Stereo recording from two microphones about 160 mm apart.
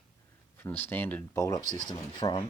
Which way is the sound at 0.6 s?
15° left (ahead or behind).